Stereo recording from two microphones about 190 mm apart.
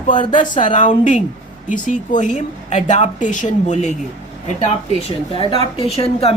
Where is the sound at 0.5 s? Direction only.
40° left (ahead or behind).